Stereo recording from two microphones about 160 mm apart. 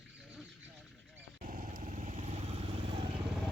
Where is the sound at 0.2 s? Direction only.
Centre (ahead or behind).